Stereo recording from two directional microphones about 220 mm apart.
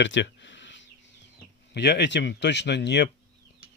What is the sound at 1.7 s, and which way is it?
Speech, 50° left (ahead or behind).